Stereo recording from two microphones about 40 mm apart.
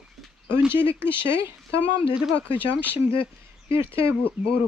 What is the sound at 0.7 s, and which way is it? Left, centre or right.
Speech, right.